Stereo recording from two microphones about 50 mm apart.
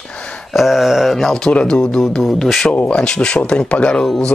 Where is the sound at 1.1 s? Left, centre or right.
Centre.